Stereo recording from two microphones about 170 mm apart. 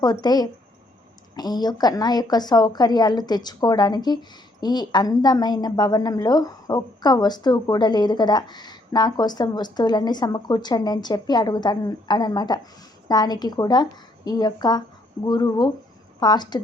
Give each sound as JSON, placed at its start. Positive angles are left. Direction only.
{"t": 0.0, "sound": "a woman's voice", "side_deg": 25}